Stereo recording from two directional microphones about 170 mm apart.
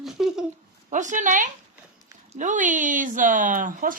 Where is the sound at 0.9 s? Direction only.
45° right (ahead or behind).